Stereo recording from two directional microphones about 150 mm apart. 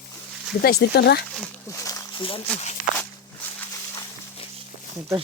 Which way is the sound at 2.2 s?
35° left (ahead or behind).